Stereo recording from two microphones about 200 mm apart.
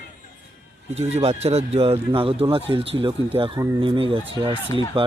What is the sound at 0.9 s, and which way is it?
Speech, 30° right (ahead or behind).